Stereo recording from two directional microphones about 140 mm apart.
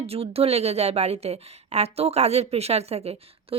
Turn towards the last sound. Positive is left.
turn(degrees=-45)  # may be behind; listen again after turning